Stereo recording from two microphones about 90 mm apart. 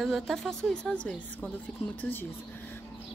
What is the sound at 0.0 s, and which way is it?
A woman's voice, centre (ahead or behind).